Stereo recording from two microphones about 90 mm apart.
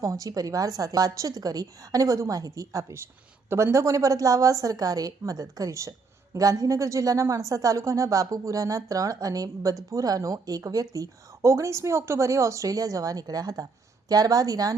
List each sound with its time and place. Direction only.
0.0 s a woman's voice: 40° right (ahead or behind)